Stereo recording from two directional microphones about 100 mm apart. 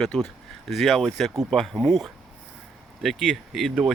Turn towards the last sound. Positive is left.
turn(degrees=-5)  # may be behind; listen again after turning